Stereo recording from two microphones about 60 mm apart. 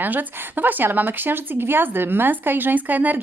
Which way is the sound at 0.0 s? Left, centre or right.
Right.